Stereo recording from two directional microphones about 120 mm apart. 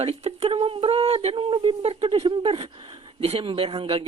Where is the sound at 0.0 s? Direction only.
60° right (ahead or behind).